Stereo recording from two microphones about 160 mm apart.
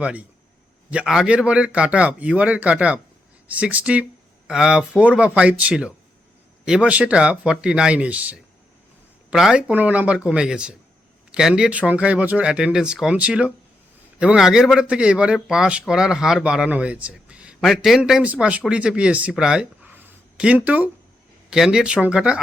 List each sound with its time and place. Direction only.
0.0 s speech: 10° right (ahead or behind)